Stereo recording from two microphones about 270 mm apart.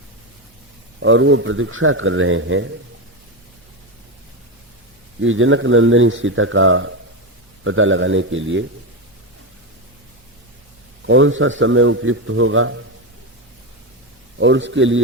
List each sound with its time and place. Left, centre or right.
0.9 s a man's voice: right
5.2 s a man's voice: right
11.0 s a man's voice: right
14.3 s a man's voice: right